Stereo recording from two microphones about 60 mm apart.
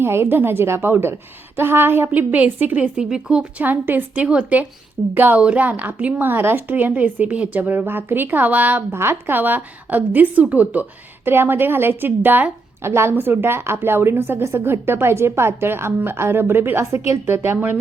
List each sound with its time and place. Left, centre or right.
0.0 s a woman's voice: right; by 3.4 s centre
3.6 s speech: right
5.1 s a woman's voice: right
5.4 s speech: right
9.0 s speech: right
11.3 s a woman's voice: right
12.8 s a woman's voice: right